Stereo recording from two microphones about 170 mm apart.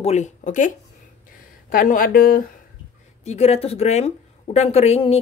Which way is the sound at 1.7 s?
50° left (ahead or behind).